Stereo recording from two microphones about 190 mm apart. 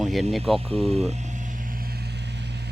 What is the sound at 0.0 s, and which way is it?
Speech, centre (ahead or behind).